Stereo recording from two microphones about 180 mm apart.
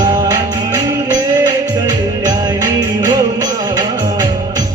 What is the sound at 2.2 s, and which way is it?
Music, 20° right (ahead or behind).